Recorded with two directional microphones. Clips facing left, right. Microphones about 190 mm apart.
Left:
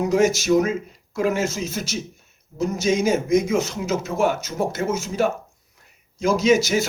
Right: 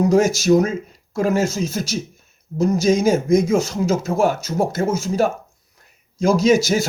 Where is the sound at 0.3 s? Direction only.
35° right (ahead or behind).